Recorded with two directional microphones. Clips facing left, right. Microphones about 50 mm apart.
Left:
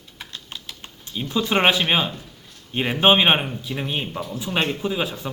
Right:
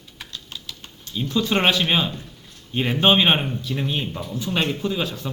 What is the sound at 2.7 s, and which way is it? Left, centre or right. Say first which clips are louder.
Speech: left 1 dB; centre.